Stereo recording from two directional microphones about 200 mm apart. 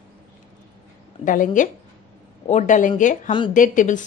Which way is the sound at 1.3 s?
40° left (ahead or behind).